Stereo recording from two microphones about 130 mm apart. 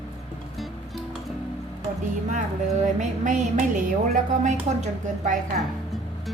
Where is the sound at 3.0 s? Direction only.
70° right (ahead or behind).